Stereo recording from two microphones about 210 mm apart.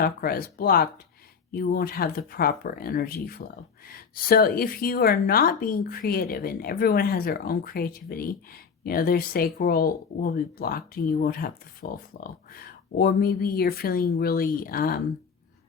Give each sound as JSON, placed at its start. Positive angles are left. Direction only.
{"t": 0.0, "sound": "a woman's voice", "side_deg": 45}